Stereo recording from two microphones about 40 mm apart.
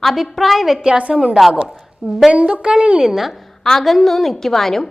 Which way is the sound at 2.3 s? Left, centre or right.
Right.